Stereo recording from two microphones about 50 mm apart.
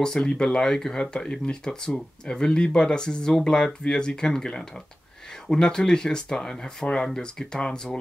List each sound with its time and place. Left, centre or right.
0.0 s speech: centre